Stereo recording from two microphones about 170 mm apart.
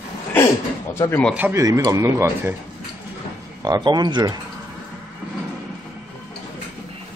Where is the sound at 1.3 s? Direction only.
15° right (ahead or behind).